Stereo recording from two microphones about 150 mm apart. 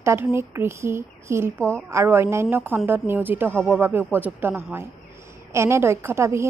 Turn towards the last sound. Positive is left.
turn(degrees=-20)  # may be behind; listen again after turning